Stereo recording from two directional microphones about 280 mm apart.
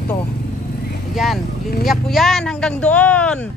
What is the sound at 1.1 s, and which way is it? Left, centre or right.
Speech, centre.